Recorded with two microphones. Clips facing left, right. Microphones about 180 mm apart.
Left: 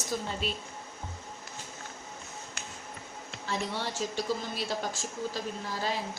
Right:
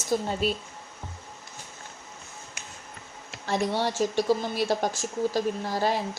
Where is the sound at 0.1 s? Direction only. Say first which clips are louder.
Right 8 dB; 40° right (ahead or behind).